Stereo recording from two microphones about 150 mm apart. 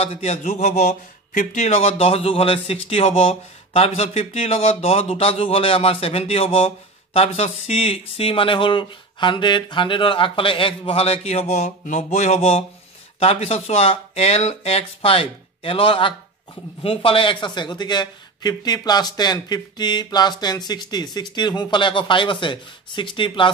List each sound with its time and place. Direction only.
0.0 s a man's voice: 45° left (ahead or behind)